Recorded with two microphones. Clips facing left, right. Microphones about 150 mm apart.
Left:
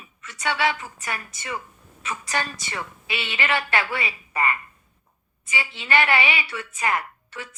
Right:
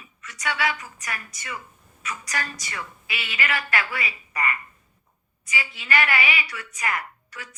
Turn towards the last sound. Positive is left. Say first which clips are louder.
# left 3 dB
turn(degrees=25)  # may be behind; listen again after turning